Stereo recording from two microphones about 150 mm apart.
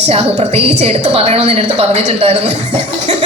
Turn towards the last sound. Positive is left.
turn(degrees=-45)  # may be behind; listen again after turning